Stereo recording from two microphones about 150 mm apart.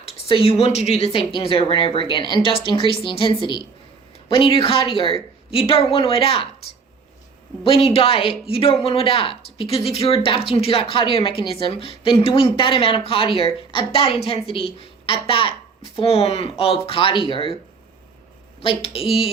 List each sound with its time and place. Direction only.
0.0 s speech: 40° left (ahead or behind)
7.6 s speech: 35° left (ahead or behind)
18.6 s speech: 35° left (ahead or behind)